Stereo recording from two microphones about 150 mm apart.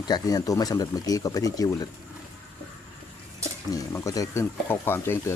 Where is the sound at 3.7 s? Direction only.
20° left (ahead or behind).